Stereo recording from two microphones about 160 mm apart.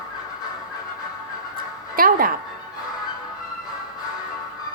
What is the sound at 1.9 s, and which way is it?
Music, 65° right (ahead or behind).